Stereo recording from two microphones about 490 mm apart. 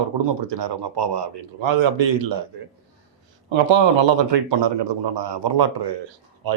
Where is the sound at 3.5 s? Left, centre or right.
Right.